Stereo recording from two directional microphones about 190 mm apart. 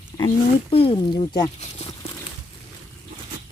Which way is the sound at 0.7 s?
30° left (ahead or behind).